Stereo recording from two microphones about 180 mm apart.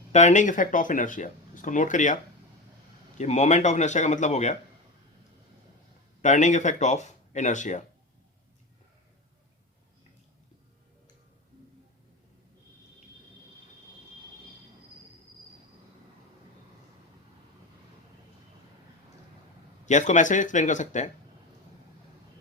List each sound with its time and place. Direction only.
0.1 s speech: 40° left (ahead or behind)
3.2 s speech: 40° left (ahead or behind)
6.2 s speech: 40° left (ahead or behind)
19.8 s speech: 40° left (ahead or behind)